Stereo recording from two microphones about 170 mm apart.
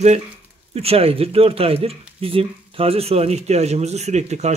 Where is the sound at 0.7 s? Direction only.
35° right (ahead or behind).